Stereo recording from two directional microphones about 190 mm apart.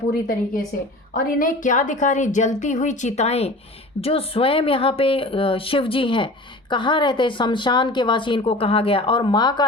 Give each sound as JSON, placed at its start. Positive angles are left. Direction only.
{"t": 0.1, "sound": "a woman's voice", "side_deg": 50}